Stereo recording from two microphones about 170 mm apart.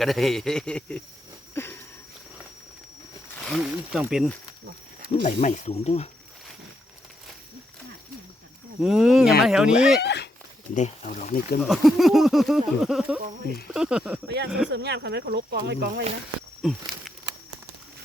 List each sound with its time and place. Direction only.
0.0 s speech: centre (ahead or behind)
1.5 s a sound: 10° left (ahead or behind)
3.4 s speech: centre (ahead or behind)
5.2 s speech: 45° left (ahead or behind)
8.8 s speech: centre (ahead or behind)
10.0 s a sound: 80° left
10.8 s speech: 50° left (ahead or behind)
11.6 s speech: centre (ahead or behind)
14.7 s speech: 85° right
16.6 s a sound: centre (ahead or behind)